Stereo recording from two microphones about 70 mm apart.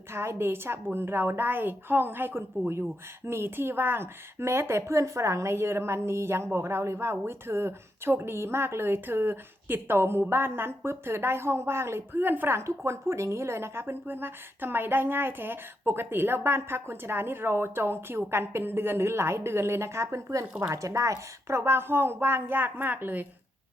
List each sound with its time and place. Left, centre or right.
0.1 s a woman's voice: right
12.5 s a woman's voice: right